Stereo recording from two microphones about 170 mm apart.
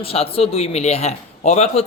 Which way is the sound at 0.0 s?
35° left (ahead or behind).